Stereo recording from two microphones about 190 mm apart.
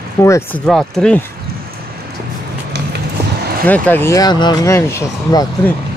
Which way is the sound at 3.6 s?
10° left (ahead or behind).